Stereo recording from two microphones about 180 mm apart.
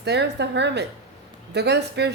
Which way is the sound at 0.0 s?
70° right (ahead or behind).